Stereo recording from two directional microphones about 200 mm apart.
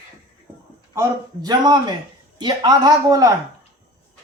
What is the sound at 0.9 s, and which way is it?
Speech, 20° right (ahead or behind).